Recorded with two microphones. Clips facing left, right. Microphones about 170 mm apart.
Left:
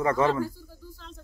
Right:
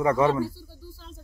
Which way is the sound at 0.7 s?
30° right (ahead or behind).